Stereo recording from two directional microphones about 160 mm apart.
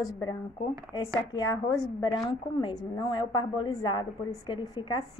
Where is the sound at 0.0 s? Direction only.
20° left (ahead or behind).